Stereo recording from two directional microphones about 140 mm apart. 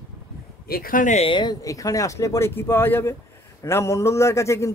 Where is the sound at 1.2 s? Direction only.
35° left (ahead or behind).